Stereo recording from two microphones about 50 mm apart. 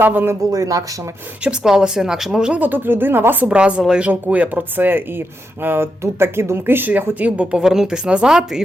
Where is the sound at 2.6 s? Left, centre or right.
Right.